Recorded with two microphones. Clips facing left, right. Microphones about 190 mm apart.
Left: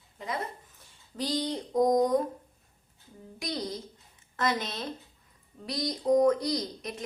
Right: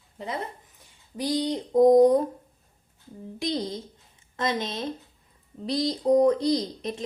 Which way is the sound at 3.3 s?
25° right (ahead or behind).